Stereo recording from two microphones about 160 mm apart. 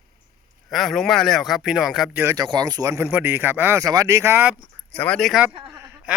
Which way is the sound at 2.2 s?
15° right (ahead or behind).